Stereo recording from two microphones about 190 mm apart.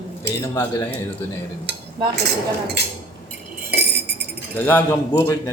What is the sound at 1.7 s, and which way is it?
Cutlery, 65° right (ahead or behind).